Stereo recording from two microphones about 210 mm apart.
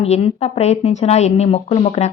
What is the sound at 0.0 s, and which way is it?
Speech, 30° left (ahead or behind).